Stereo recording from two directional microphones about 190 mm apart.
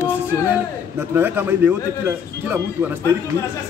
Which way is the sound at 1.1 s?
10° right (ahead or behind).